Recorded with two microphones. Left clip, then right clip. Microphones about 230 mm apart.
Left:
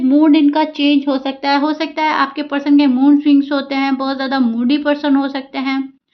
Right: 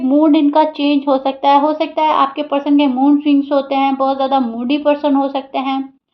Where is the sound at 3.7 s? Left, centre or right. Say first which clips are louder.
Right 4 dB; left.